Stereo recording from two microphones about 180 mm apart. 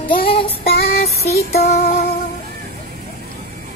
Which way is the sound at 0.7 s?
60° left (ahead or behind).